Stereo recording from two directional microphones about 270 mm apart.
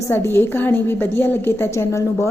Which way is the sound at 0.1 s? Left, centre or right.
Centre.